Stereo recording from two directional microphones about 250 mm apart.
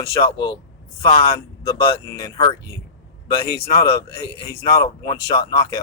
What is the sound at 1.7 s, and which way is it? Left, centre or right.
Speech, centre.